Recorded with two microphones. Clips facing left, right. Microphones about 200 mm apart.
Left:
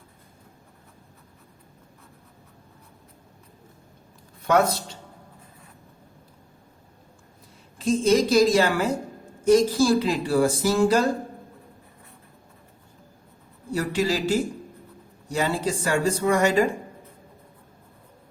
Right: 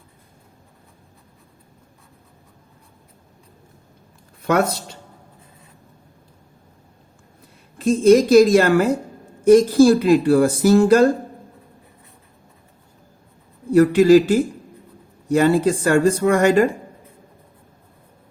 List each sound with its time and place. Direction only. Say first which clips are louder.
7.8 s speech: right 7 dB; 55° right (ahead or behind)
13.7 s speech: right 13 dB; 55° right (ahead or behind)